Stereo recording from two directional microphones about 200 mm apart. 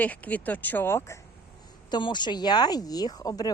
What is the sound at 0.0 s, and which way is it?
Speech, 10° left (ahead or behind).